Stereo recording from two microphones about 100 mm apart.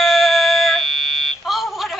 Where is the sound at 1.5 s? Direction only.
Centre (ahead or behind).